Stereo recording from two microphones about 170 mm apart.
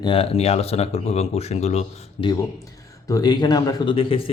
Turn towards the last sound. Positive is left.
turn(degrees=30)  # may be behind; listen again after turning